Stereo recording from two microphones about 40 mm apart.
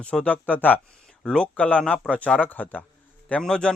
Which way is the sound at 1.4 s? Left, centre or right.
Left.